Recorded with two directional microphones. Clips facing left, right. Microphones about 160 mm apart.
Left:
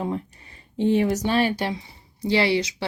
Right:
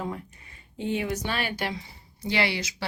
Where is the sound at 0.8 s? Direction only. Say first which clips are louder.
Left 8 dB; 40° left (ahead or behind).